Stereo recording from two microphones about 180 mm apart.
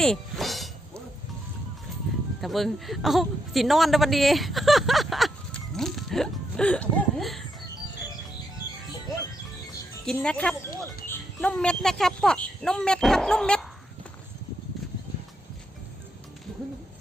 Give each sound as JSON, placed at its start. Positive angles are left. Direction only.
{"t": 0.0, "sound": "a sound", "side_deg": 0}
{"t": 2.4, "sound": "a man's voice", "side_deg": 0}
{"t": 10.1, "sound": "a man's voice", "side_deg": 5}